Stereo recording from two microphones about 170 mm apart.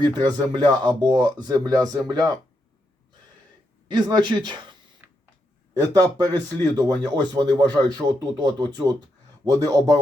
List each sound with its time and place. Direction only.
0.0 s speech: 25° right (ahead or behind)
3.8 s speech: 25° right (ahead or behind)
5.0 s a sound: 10° right (ahead or behind)
5.9 s speech: 20° right (ahead or behind)